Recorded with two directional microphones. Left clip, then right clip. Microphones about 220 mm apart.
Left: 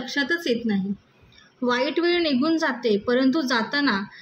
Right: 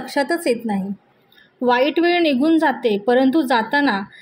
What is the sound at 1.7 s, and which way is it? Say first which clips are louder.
A woman's voice: right 6 dB; 15° right (ahead or behind).